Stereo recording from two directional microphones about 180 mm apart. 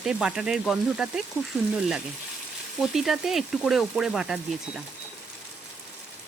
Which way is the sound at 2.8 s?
Centre (ahead or behind).